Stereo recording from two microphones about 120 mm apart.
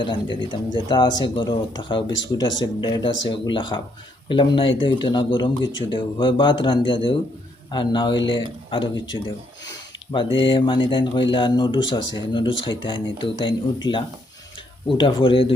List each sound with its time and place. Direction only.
0.0 s speech: 40° left (ahead or behind)
10.3 s speech: 45° left (ahead or behind)